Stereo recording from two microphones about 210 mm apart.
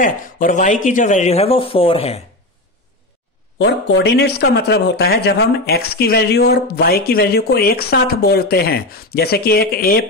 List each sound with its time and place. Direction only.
0.0 s speech: 40° left (ahead or behind)
3.5 s speech: 55° left (ahead or behind)